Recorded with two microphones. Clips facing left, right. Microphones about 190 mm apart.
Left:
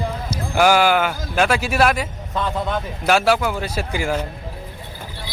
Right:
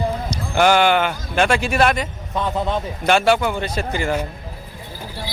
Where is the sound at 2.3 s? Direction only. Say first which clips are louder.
Right 1 dB; 15° right (ahead or behind).